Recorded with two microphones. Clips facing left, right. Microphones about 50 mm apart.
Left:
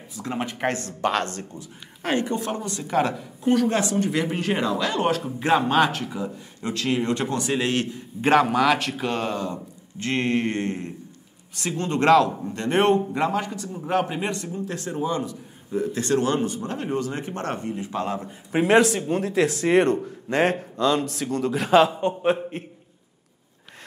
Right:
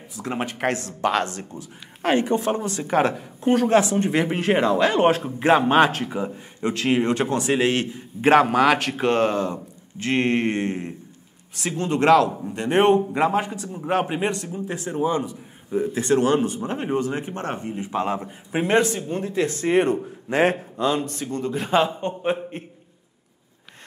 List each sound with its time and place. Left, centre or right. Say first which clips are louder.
0.2 s a woman's voice: right 1 dB; centre
7.2 s a woman's voice: right 4 dB; centre; by 9.5 s right
10.0 s a man's voice: right 2 dB; centre
12.5 s a woman's voice: right 2 dB; centre
18.5 s a man's voice: left 2 dB; centre
20.2 s a man's voice: right 2 dB; right
20.7 s a man's voice: left 1 dB; centre